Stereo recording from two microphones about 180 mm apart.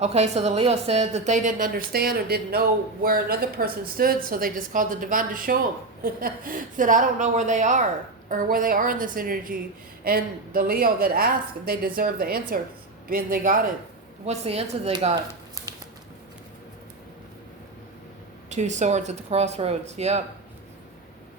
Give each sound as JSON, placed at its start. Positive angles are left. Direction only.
{"t": 0.0, "sound": "a woman's voice", "side_deg": -35}
{"t": 14.3, "sound": "speech", "side_deg": -35}
{"t": 15.6, "sound": "a sound", "side_deg": -20}
{"t": 18.4, "sound": "speech", "side_deg": -40}